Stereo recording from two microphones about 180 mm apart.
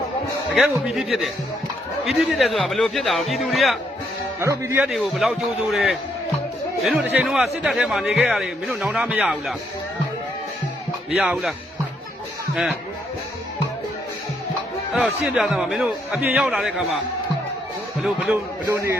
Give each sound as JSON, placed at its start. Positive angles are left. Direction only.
{"t": 0.5, "sound": "a man's voice", "side_deg": 0}
{"t": 4.4, "sound": "a man's voice", "side_deg": -15}
{"t": 4.8, "sound": "a man's voice", "side_deg": 0}
{"t": 11.2, "sound": "a man's voice", "side_deg": 0}
{"t": 14.9, "sound": "a man's voice", "side_deg": 0}
{"t": 18.7, "sound": "a man's voice", "side_deg": -15}